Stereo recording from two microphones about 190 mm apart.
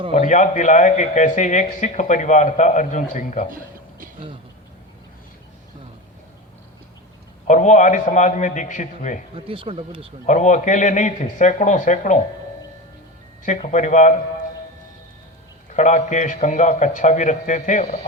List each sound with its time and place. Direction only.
0.1 s a man's voice: 40° left (ahead or behind)
7.4 s a man's voice: 40° left (ahead or behind)
9.3 s speech: 30° right (ahead or behind)
10.2 s a man's voice: 40° left (ahead or behind)
13.7 s a man's voice: 40° left (ahead or behind)
15.7 s a man's voice: 40° left (ahead or behind)